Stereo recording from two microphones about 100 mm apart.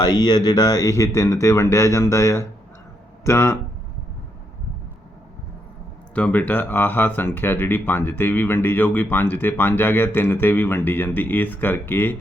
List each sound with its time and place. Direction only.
0.0 s speech: 45° left (ahead or behind); by 3.6 s 30° left (ahead or behind)
6.1 s speech: 15° left (ahead or behind)